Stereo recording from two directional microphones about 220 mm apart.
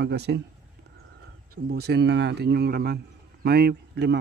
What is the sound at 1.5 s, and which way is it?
Speech, 45° right (ahead or behind).